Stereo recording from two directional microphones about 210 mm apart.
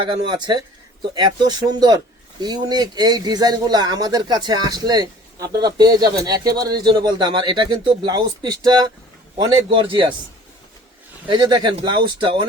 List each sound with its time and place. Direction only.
0.0 s speech: 20° right (ahead or behind)
11.3 s speech: 20° right (ahead or behind)